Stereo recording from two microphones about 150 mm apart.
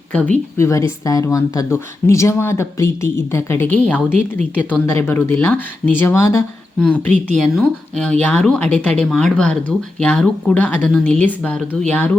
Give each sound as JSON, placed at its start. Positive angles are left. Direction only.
{"t": 0.1, "sound": "speech", "side_deg": 10}
{"t": 6.7, "sound": "speech", "side_deg": 5}